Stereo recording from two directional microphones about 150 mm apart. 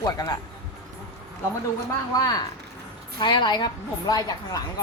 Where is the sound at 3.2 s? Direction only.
30° left (ahead or behind).